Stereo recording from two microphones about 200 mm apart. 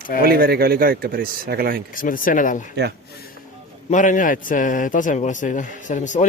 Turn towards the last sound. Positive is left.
turn(degrees=40)  # may be behind; listen again after turning